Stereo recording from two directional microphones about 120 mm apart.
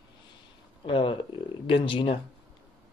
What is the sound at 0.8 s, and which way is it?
Speech, 45° left (ahead or behind).